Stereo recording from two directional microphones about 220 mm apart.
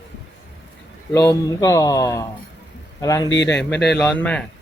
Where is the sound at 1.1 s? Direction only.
15° left (ahead or behind).